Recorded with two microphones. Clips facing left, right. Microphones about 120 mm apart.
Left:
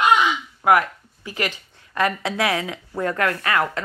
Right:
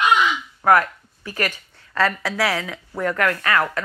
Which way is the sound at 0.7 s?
15° left (ahead or behind).